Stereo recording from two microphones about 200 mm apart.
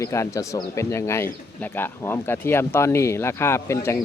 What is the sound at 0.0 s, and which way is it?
Speech, 15° left (ahead or behind).